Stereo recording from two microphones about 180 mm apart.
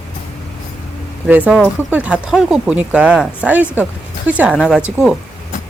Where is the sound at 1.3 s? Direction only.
5° right (ahead or behind).